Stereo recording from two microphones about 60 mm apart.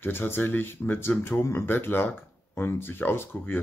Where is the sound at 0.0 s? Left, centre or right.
Left.